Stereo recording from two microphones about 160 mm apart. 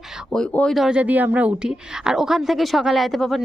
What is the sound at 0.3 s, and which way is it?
Speech, 5° left (ahead or behind).